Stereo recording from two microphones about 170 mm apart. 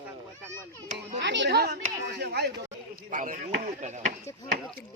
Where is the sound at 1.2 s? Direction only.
90° right.